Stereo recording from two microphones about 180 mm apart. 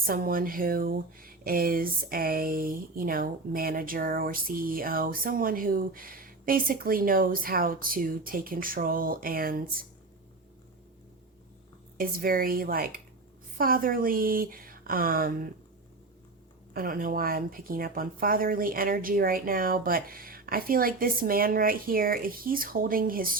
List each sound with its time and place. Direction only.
0.0 s speech: 55° right (ahead or behind)
11.9 s speech: 55° right (ahead or behind)
16.7 s speech: 50° right (ahead or behind)